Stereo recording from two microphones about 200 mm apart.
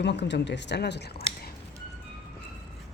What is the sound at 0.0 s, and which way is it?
Speech, 60° left (ahead or behind).